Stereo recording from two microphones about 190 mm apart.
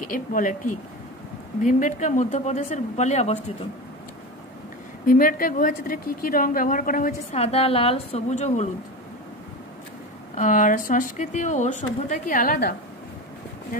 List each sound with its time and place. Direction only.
0.0 s speech: 45° left (ahead or behind)
1.6 s a woman's voice: 40° left (ahead or behind)
5.0 s speech: 45° left (ahead or behind)
7.3 s a woman's voice: 30° left (ahead or behind)
10.3 s speech: 40° left (ahead or behind)